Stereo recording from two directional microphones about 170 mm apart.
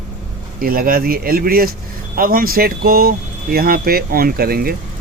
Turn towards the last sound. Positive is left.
turn(degrees=-60)  # may be behind; listen again after turning